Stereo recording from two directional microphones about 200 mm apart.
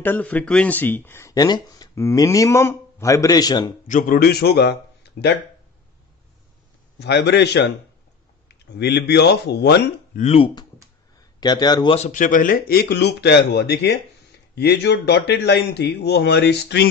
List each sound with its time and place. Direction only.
0.0 s speech: 10° left (ahead or behind)
3.9 s a man's voice: 45° left (ahead or behind)
7.0 s speech: 55° left (ahead or behind)
10.1 s speech: 30° left (ahead or behind)
12.1 s speech: 40° left (ahead or behind); by 16.8 s 60° left (ahead or behind)